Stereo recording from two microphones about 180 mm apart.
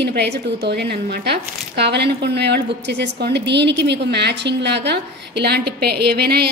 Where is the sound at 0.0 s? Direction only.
70° right (ahead or behind).